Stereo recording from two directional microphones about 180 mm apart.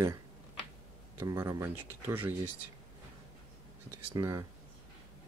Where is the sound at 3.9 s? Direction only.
15° right (ahead or behind).